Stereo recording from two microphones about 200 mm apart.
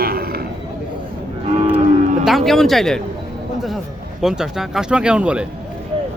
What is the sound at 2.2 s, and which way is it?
Speech, centre (ahead or behind).